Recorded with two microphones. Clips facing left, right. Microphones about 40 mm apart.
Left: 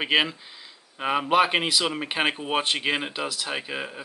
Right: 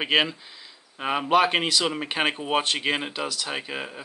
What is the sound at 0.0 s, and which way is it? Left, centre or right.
Speech, centre.